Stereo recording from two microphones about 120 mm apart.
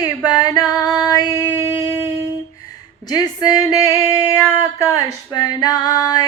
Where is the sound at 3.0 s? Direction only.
35° left (ahead or behind).